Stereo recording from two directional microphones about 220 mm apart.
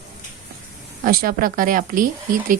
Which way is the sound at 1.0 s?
40° right (ahead or behind).